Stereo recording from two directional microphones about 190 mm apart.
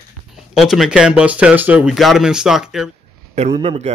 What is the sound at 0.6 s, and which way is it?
Speech, centre (ahead or behind).